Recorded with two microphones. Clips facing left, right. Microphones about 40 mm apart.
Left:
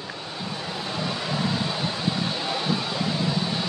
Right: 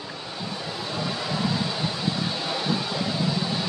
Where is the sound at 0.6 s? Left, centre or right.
Centre.